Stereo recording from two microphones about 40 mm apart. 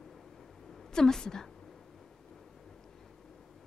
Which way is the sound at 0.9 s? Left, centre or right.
Centre.